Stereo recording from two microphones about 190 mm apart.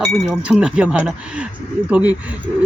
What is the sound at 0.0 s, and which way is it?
Speech, centre (ahead or behind).